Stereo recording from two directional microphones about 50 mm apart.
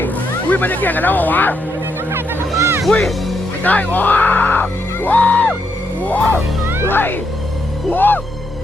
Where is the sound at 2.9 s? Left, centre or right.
Centre.